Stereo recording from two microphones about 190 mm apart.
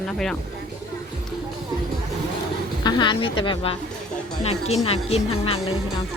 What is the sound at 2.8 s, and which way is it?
A woman's voice, 25° left (ahead or behind).